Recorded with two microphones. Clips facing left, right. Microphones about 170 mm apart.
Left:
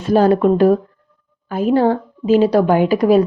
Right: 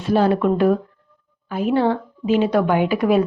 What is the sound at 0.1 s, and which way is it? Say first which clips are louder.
A woman's voice: left 4 dB; 40° left (ahead or behind).